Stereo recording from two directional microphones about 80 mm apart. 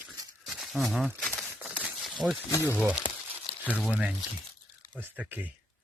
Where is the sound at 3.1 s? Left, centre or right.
Left.